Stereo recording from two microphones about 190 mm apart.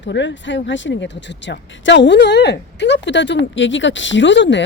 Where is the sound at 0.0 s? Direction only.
70° left (ahead or behind).